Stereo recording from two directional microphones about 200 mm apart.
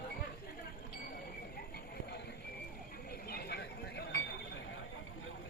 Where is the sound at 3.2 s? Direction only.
50° left (ahead or behind).